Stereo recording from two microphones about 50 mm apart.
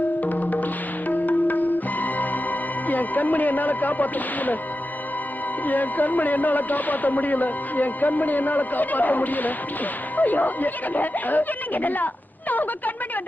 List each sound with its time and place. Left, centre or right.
0.2 s music: left
5.6 s speech: left